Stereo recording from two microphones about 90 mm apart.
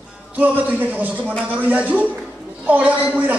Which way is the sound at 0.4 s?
20° right (ahead or behind).